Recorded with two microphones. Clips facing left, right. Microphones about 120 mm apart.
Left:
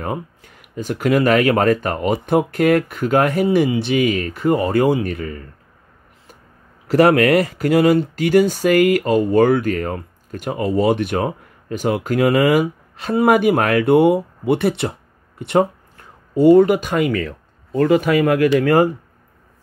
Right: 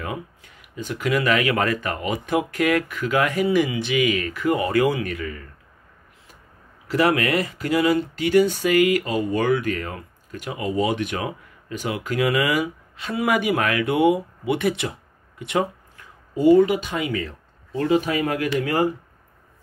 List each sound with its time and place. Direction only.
0.0 s speech: 45° left (ahead or behind)
6.9 s speech: 50° left (ahead or behind)